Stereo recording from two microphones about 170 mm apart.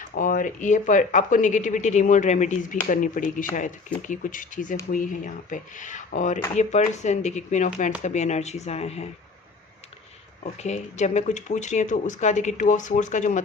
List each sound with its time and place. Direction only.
0.1 s speech: 55° left (ahead or behind); by 9.0 s 40° left (ahead or behind)
10.6 s speech: 40° left (ahead or behind)